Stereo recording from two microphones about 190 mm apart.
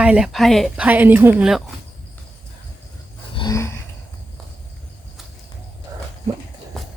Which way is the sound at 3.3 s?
20° left (ahead or behind).